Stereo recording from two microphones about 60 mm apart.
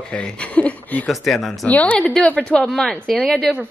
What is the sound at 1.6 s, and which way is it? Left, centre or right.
Speech, left.